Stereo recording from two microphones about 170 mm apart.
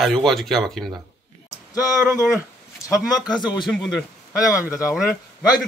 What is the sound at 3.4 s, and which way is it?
Speech, 25° left (ahead or behind).